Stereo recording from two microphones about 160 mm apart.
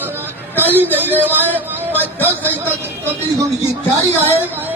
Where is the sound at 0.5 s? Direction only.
10° right (ahead or behind).